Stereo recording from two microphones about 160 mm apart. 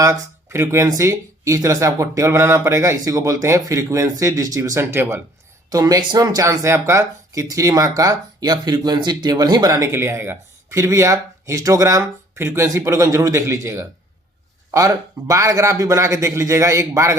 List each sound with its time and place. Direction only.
0.0 s speech: 15° right (ahead or behind)